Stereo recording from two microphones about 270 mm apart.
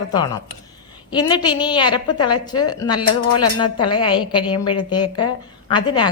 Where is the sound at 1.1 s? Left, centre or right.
Centre.